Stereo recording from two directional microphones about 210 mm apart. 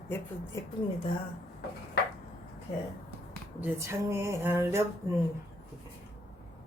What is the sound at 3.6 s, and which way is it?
Speech, 10° right (ahead or behind).